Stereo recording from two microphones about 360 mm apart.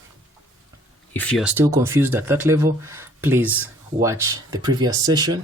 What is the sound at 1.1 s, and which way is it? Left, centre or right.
Speech, centre.